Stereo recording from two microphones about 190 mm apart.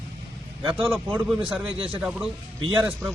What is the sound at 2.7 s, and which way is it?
Speech, 10° right (ahead or behind).